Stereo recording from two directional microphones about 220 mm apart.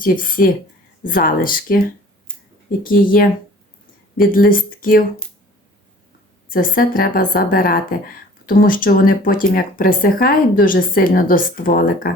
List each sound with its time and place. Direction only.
0.0 s a woman's voice: 40° left (ahead or behind)
2.8 s a woman's voice: 40° left (ahead or behind)
6.5 s a woman's voice: 40° left (ahead or behind)